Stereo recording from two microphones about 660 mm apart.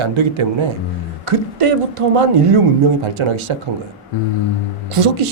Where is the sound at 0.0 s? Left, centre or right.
Right.